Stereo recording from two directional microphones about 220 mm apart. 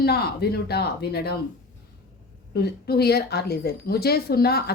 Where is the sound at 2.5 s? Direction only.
45° left (ahead or behind).